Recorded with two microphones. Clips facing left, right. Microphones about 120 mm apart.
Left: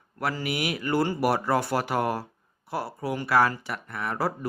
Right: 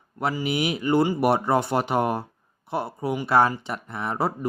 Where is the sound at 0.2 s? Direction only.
20° right (ahead or behind).